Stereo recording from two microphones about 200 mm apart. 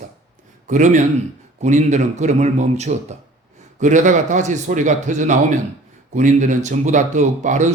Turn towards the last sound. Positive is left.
turn(degrees=-35)  # may be behind; listen again after turning